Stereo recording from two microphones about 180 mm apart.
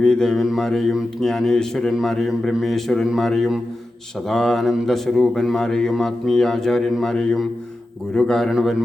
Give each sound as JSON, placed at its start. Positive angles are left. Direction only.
{"t": 0.0, "sound": "a man's voice", "side_deg": 5}